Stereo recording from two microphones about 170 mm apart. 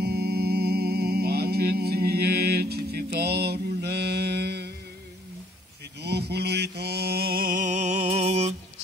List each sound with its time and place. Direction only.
0.0 s music: 70° right (ahead or behind)
5.9 s mantra: 75° right (ahead or behind); by 8.5 s 40° right (ahead or behind)